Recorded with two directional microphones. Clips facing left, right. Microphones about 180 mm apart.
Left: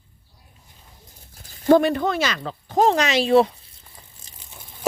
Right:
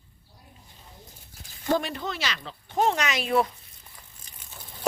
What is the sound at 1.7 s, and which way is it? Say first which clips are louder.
Speech: left 11 dB; 60° left (ahead or behind).